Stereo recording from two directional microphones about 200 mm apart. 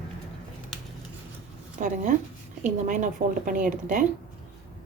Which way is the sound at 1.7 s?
40° right (ahead or behind).